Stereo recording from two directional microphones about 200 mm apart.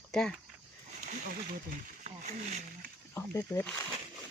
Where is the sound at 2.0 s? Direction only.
35° right (ahead or behind).